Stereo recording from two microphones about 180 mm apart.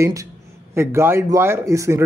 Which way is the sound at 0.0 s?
15° right (ahead or behind).